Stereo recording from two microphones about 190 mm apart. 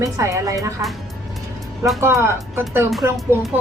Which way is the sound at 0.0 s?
15° right (ahead or behind).